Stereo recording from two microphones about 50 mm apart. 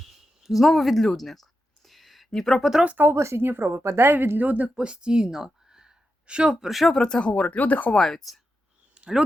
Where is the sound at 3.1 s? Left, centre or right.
Right.